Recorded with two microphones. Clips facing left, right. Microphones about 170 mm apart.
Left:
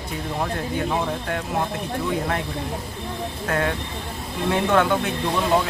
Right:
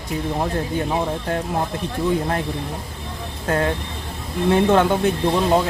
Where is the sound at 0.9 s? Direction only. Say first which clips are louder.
Right 2 dB; 35° right (ahead or behind).